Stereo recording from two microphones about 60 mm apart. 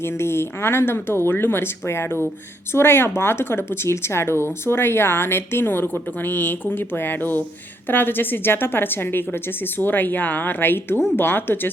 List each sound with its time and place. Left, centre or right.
0.0 s speech: left